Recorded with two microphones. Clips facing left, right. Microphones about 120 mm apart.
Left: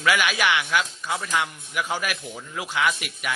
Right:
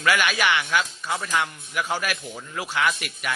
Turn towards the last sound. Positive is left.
turn(degrees=5)  # may be behind; listen again after turning